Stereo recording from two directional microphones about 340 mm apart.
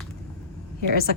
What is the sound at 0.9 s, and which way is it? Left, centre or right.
Speech, left.